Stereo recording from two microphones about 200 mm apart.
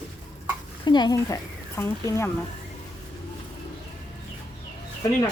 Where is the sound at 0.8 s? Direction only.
20° left (ahead or behind).